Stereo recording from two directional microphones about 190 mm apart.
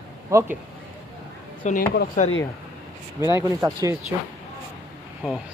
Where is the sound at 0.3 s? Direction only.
15° right (ahead or behind).